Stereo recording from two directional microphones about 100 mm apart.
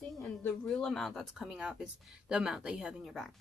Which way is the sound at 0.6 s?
5° left (ahead or behind).